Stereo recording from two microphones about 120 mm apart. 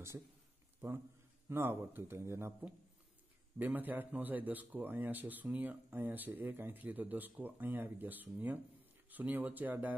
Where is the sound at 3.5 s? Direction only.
15° right (ahead or behind).